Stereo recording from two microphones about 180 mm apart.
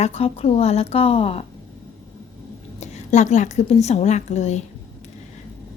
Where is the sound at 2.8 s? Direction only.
40° left (ahead or behind).